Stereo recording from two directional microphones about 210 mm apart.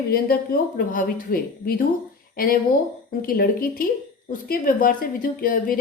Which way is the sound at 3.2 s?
45° left (ahead or behind).